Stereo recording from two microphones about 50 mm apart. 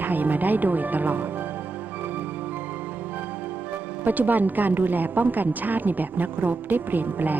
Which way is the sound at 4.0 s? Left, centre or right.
Right.